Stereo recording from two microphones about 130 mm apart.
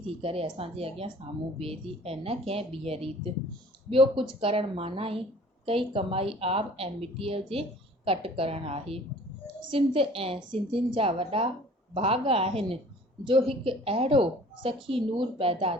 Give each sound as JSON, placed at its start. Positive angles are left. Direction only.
{"t": 0.0, "sound": "a woman's voice", "side_deg": -45}